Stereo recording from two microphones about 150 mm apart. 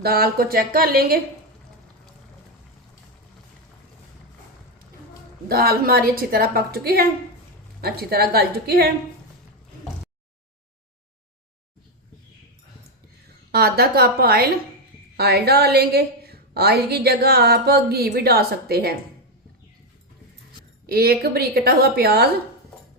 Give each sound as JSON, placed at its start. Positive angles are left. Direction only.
{"t": 0.0, "sound": "speech", "side_deg": -90}
{"t": 5.5, "sound": "a woman's voice", "side_deg": -85}
{"t": 13.5, "sound": "a woman's voice", "side_deg": -90}
{"t": 20.8, "sound": "a woman's voice", "side_deg": -90}